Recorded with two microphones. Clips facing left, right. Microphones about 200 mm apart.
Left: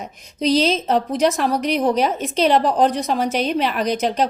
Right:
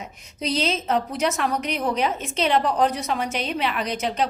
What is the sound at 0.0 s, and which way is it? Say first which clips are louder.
A woman's voice: left 8 dB; 35° left (ahead or behind).